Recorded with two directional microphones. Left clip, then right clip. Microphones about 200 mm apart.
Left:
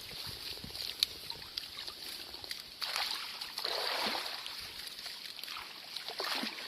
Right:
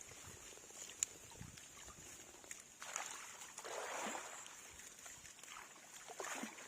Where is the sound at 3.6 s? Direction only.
15° left (ahead or behind).